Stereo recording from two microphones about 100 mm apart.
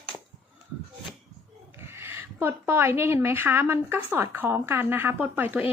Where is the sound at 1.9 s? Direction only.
25° right (ahead or behind).